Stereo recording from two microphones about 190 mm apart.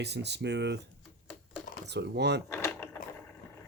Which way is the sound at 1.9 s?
65° right (ahead or behind).